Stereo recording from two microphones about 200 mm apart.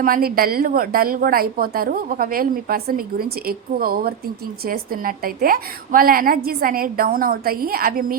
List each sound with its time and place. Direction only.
0.0 s a woman's voice: 45° right (ahead or behind)